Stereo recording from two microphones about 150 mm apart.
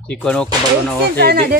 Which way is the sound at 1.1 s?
90° right.